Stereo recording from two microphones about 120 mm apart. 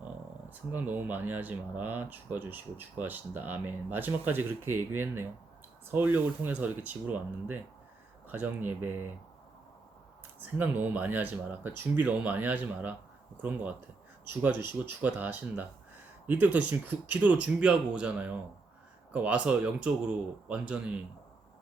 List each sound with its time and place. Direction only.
0.5 s speech: 15° right (ahead or behind)
10.4 s speech: 15° right (ahead or behind)
14.8 s speech: 15° right (ahead or behind)